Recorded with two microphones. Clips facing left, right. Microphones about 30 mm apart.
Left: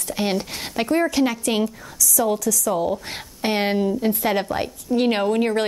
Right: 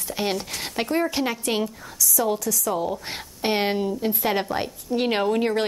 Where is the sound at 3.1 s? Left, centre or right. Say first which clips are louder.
Left 1 dB; centre.